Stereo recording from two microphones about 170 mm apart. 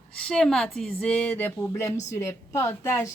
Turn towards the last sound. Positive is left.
turn(degrees=15)  # may be behind; listen again after turning